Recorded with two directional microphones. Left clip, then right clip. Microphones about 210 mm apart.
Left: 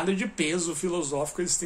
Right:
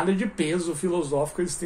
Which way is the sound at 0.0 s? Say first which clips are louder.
Right 2 dB; 10° left (ahead or behind).